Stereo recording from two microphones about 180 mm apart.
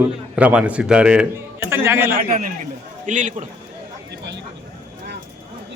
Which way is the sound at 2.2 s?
50° right (ahead or behind).